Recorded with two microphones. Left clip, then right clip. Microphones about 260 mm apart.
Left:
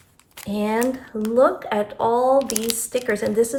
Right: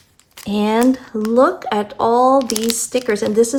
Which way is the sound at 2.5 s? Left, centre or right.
Centre.